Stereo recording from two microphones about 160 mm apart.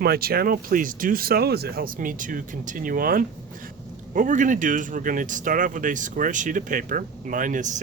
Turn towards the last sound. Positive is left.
turn(degrees=-50)  # may be behind; listen again after turning